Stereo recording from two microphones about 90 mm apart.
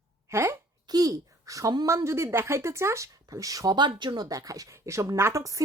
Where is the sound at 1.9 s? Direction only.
30° right (ahead or behind).